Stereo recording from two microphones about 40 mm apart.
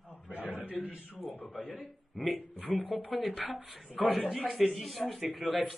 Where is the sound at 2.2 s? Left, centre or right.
Centre.